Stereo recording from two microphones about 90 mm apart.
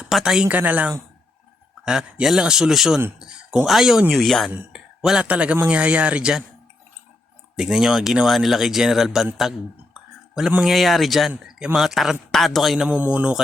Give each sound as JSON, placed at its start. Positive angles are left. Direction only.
{"t": 0.0, "sound": "a man's voice", "side_deg": -5}
{"t": 4.5, "sound": "a man's voice", "side_deg": -10}
{"t": 7.5, "sound": "speech", "side_deg": -5}
{"t": 10.6, "sound": "speech", "side_deg": 0}
{"t": 13.0, "sound": "a man's voice", "side_deg": -15}